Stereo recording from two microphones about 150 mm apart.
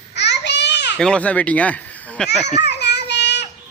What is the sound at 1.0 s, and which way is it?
Speech, 5° left (ahead or behind).